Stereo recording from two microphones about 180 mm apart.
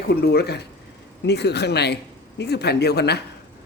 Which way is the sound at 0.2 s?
60° left (ahead or behind).